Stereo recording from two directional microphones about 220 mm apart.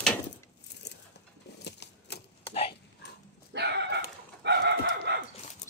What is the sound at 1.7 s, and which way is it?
Typewriter, 50° left (ahead or behind).